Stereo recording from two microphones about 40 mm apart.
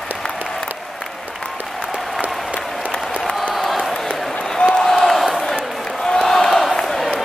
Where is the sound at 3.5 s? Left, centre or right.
Centre.